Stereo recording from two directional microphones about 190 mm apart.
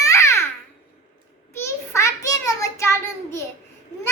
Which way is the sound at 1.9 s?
15° left (ahead or behind).